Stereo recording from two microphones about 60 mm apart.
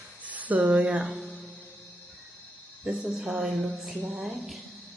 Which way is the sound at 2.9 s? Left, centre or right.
Centre.